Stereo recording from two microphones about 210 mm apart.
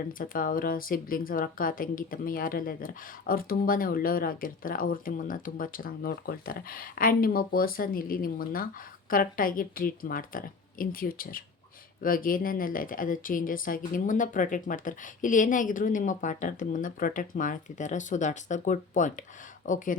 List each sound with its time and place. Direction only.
0.1 s speech: 40° left (ahead or behind)